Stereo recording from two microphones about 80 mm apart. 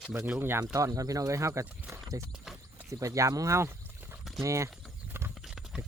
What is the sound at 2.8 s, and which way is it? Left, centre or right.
Speech, right.